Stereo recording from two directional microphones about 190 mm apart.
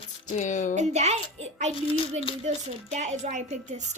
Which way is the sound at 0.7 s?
35° right (ahead or behind).